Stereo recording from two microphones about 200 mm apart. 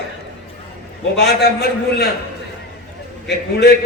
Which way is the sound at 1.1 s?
55° left (ahead or behind).